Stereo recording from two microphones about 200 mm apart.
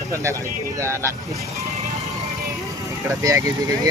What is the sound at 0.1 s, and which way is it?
Speech, 15° right (ahead or behind).